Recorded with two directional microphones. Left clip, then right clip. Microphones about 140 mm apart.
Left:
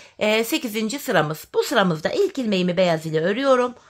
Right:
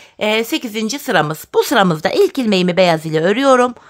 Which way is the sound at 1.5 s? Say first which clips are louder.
Right 7 dB; 45° right (ahead or behind).